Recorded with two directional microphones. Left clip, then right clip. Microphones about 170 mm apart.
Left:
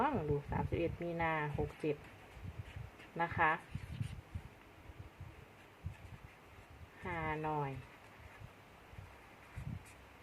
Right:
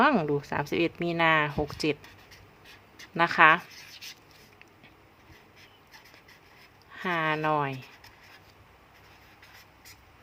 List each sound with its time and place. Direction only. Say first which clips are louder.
0.0 s speech: right 12 dB; 65° right (ahead or behind)
3.2 s speech: right 14 dB; 55° right (ahead or behind)
7.0 s speech: right 13 dB; 55° right (ahead or behind)